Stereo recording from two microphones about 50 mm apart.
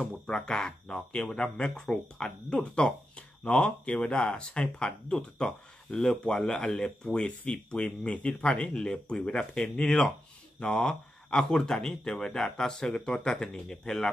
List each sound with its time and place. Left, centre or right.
0.0 s speech: centre